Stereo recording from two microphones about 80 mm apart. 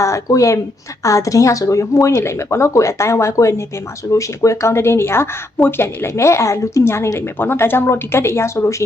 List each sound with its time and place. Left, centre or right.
0.0 s speech: left